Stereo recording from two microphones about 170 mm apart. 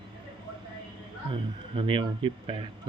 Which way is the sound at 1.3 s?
30° right (ahead or behind).